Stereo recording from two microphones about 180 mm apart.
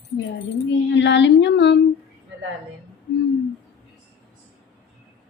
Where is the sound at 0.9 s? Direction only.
80° left.